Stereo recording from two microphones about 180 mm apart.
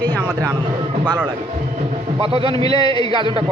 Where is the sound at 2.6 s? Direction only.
20° left (ahead or behind).